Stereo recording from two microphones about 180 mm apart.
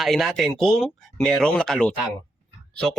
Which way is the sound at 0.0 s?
Centre (ahead or behind).